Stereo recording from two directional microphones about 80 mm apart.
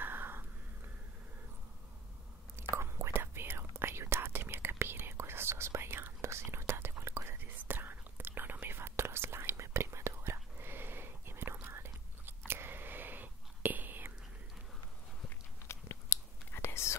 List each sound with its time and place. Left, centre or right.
0.0 s a sound: right
2.7 s whispering: right
11.6 s biting: right
15.6 s whispering: left